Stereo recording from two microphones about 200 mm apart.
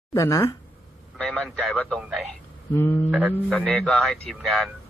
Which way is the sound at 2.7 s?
10° left (ahead or behind).